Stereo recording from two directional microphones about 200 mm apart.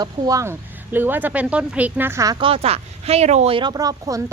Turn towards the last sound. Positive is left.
turn(degrees=-20)  # may be behind; listen again after turning